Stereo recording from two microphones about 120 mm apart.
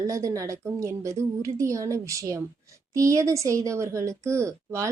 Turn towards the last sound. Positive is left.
turn(degrees=-25)  # may be behind; listen again after turning